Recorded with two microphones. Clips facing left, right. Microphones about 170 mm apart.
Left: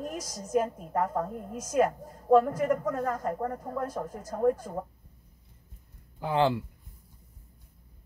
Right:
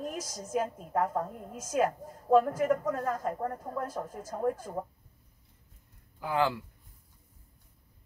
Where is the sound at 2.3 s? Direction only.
5° right (ahead or behind).